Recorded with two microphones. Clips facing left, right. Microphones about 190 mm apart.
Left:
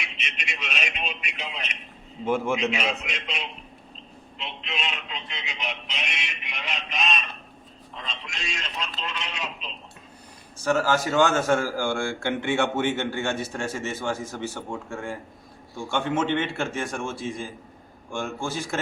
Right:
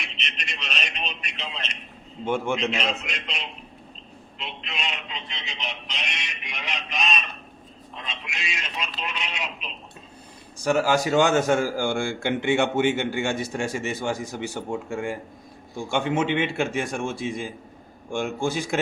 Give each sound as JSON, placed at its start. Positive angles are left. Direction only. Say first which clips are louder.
{"t": 0.0, "sound": "a sound", "louder": "even", "side_deg": 5}
{"t": 2.2, "sound": "a man's voice", "louder": "left 1 dB", "side_deg": 0}
{"t": 10.6, "sound": "a man's voice", "louder": "right 2 dB", "side_deg": -15}